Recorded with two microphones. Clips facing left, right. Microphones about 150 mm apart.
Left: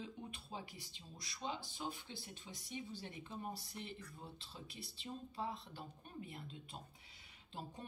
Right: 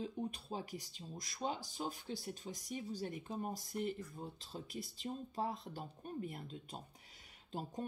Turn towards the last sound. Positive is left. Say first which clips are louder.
# right 7 dB
turn(degrees=-45)  # may be behind; listen again after turning